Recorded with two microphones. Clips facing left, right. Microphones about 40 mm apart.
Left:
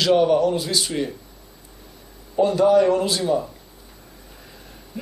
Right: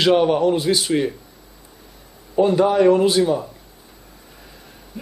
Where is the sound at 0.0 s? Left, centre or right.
Right.